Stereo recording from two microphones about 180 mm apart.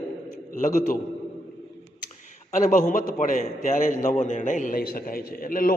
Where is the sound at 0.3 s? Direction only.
45° left (ahead or behind).